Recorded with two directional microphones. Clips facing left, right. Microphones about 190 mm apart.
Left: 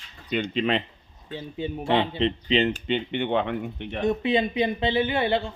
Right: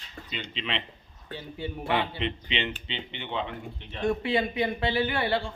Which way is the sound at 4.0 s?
20° left (ahead or behind).